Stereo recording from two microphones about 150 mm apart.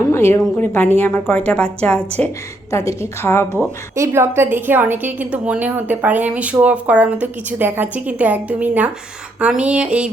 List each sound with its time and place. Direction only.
0.1 s a woman's voice: 15° left (ahead or behind)
2.6 s a woman's voice: 20° left (ahead or behind)
3.9 s a woman's voice: 20° right (ahead or behind)